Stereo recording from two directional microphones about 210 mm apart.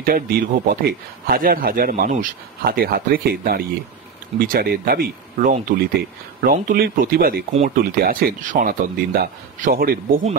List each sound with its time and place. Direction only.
0.0 s speech: 45° right (ahead or behind)